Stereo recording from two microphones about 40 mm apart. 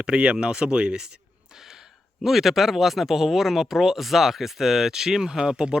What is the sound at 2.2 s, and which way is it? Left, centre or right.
Speech, centre.